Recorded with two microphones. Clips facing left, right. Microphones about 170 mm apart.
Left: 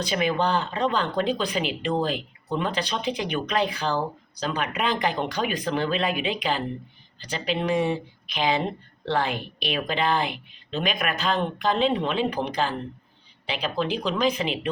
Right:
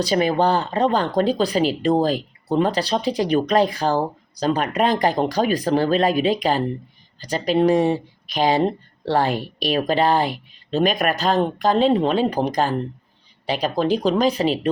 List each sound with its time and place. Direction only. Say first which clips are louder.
0.0 s speech: right 6 dB; 35° right (ahead or behind)